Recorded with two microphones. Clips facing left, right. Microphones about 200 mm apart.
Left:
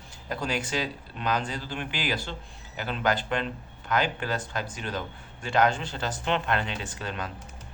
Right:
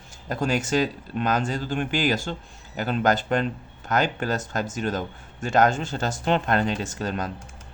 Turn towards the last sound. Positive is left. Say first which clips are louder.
# right 6 dB
turn(degrees=-40)  # may be behind; listen again after turning